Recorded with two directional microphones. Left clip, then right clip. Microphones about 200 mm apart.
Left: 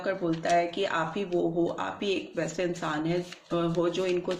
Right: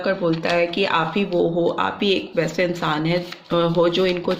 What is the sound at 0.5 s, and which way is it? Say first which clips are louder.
Speech: right 5 dB; 40° right (ahead or behind).